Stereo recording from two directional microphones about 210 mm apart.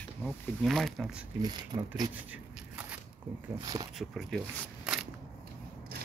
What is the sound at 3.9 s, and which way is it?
Speech, centre (ahead or behind).